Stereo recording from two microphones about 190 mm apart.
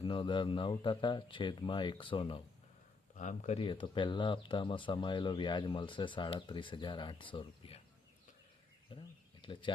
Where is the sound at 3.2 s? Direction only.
40° left (ahead or behind).